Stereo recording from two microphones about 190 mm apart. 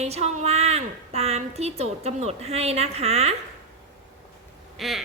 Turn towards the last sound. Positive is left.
turn(degrees=0)  # may be behind; listen again after turning